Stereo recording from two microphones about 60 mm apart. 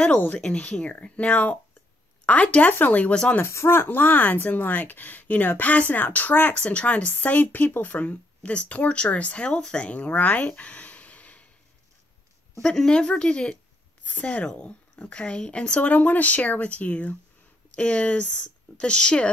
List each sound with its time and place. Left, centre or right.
0.4 s speech: centre
3.4 s speech: left
3.8 s speech: left
6.6 s speech: left
12.6 s a woman's voice: centre